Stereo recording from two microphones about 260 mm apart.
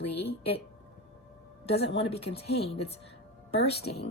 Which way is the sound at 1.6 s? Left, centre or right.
Left.